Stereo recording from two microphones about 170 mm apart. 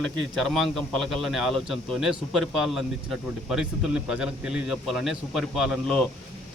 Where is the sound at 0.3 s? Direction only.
5° left (ahead or behind).